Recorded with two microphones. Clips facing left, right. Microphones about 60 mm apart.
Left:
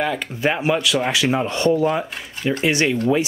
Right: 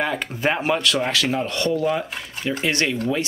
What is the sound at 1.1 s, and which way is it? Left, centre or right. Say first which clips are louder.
Speech: left 3 dB; centre.